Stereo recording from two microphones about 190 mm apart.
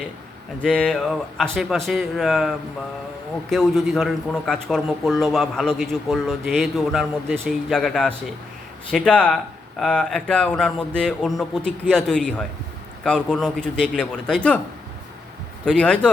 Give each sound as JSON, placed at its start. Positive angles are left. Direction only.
{"t": 0.6, "sound": "a man's voice", "side_deg": 0}
{"t": 15.6, "sound": "a man's voice", "side_deg": 5}